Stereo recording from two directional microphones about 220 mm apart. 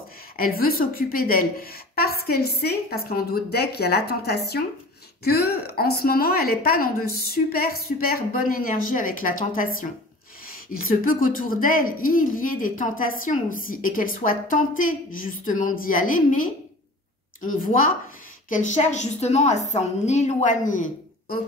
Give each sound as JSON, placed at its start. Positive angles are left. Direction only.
{"t": 0.4, "sound": "a woman's voice", "side_deg": 40}